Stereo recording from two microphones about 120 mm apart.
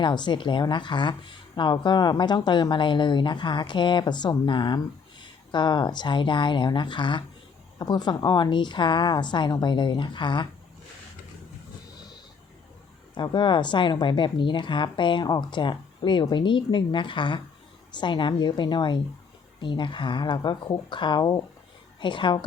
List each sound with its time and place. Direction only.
0.0 s speech: 40° left (ahead or behind)
13.1 s speech: 40° left (ahead or behind)